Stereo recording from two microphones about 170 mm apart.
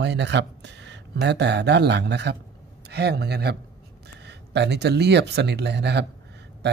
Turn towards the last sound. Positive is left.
turn(degrees=-85)